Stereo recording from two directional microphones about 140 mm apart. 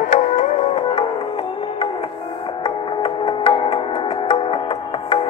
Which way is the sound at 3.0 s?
35° left (ahead or behind).